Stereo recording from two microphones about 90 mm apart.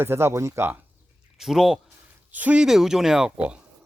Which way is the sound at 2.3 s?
15° right (ahead or behind).